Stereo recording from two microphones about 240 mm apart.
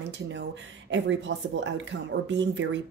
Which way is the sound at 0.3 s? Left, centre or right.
Right.